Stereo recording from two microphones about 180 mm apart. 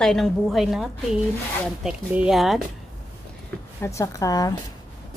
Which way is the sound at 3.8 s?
15° left (ahead or behind).